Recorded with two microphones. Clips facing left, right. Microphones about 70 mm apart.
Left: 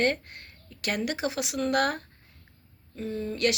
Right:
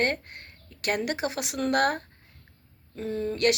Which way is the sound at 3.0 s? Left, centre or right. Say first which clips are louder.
Right 2 dB; right.